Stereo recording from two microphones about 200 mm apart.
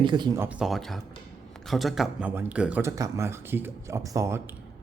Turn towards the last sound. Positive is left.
turn(degrees=-15)  # may be behind; listen again after turning